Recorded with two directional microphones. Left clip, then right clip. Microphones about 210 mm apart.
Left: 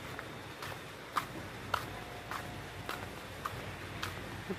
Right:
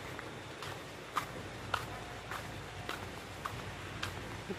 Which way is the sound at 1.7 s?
10° left (ahead or behind).